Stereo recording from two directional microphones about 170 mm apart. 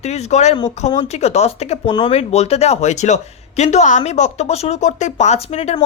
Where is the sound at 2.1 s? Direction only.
40° left (ahead or behind).